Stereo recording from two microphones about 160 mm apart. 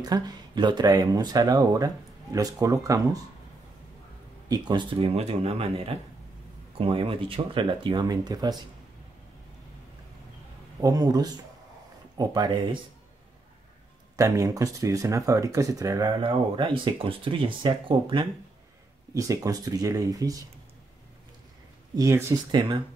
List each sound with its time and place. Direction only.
0.0 s speech: 25° right (ahead or behind)
4.5 s speech: 25° right (ahead or behind)
10.8 s speech: 25° right (ahead or behind)
14.1 s speech: 20° right (ahead or behind)
19.1 s speech: 20° right (ahead or behind)
21.9 s speech: 20° right (ahead or behind)